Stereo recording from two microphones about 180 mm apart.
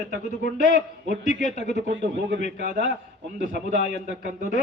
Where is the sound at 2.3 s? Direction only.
40° left (ahead or behind).